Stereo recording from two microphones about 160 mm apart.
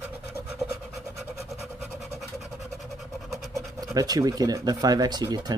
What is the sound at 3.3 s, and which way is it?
Scratch, centre (ahead or behind).